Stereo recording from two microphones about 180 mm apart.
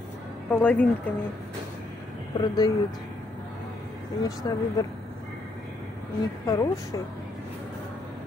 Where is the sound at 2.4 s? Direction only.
20° left (ahead or behind).